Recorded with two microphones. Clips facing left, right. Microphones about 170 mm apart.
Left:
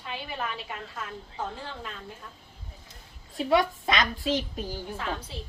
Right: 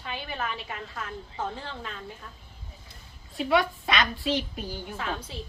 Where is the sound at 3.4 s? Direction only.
40° left (ahead or behind).